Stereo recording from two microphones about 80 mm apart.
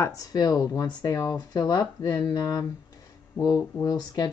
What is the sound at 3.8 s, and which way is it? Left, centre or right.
Speech, left.